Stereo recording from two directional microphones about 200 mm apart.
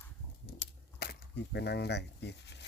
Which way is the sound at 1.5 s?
55° left (ahead or behind).